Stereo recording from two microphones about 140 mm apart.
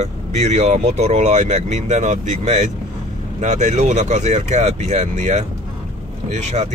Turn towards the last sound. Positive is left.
turn(degrees=-55)  # may be behind; listen again after turning